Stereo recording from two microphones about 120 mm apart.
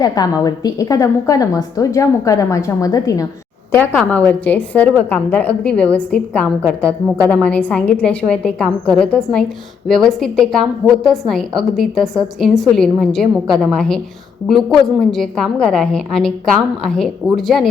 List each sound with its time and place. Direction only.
0.0 s a woman's voice: 30° left (ahead or behind)
3.8 s a woman's voice: 15° left (ahead or behind)